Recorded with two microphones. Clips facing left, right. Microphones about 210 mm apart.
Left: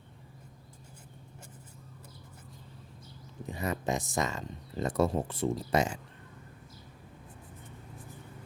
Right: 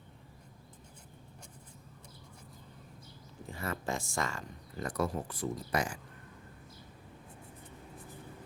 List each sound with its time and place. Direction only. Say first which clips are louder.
3.4 s speech: left 5 dB; 20° left (ahead or behind)